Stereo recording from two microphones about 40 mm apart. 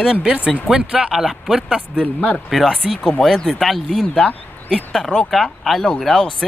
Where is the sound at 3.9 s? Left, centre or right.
Centre.